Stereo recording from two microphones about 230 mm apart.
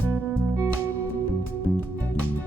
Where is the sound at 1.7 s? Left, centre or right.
Centre.